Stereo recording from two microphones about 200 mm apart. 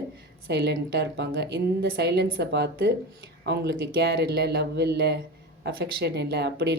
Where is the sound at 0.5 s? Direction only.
60° right (ahead or behind).